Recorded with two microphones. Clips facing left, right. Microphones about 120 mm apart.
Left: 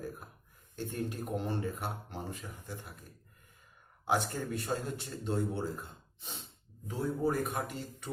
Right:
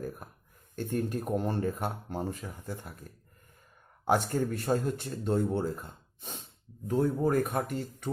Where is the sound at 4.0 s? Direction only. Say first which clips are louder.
Right 5 dB; 50° right (ahead or behind).